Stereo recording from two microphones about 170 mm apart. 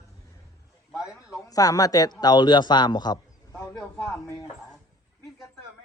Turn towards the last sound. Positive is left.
turn(degrees=5)  # may be behind; listen again after turning